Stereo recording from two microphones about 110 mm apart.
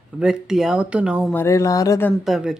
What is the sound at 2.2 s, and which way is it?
Speech, 5° right (ahead or behind).